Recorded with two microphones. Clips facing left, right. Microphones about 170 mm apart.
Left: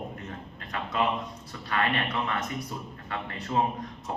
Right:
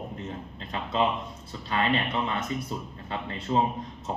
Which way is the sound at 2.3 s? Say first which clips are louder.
Right 2 dB; 25° right (ahead or behind).